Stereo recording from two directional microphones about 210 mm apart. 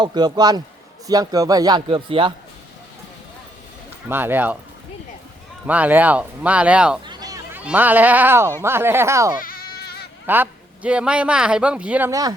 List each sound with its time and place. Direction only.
0.0 s a man's voice: 20° right (ahead or behind)
4.1 s speech: 10° right (ahead or behind)
5.6 s speech: 5° right (ahead or behind)
7.0 s speech: 20° right (ahead or behind)
9.4 s goat: 45° left (ahead or behind)
10.2 s speech: 10° right (ahead or behind)